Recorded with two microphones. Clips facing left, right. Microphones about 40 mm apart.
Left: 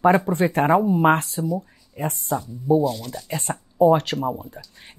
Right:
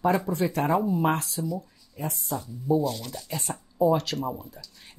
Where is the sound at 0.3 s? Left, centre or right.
Left.